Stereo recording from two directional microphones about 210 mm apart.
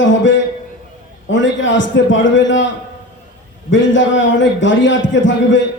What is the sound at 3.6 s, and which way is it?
A man's voice, 60° left (ahead or behind).